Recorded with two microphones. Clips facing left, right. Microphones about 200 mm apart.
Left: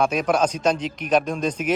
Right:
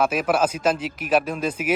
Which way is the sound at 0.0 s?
5° right (ahead or behind).